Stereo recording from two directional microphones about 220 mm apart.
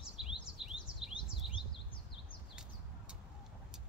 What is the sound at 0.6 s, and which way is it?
Chirp, 5° right (ahead or behind).